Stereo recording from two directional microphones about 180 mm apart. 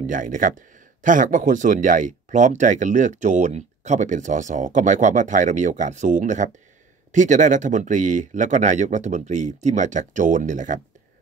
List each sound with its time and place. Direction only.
0.0 s speech: 45° right (ahead or behind)